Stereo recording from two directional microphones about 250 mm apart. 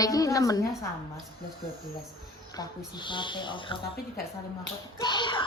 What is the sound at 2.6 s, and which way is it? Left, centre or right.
A woman's voice, centre.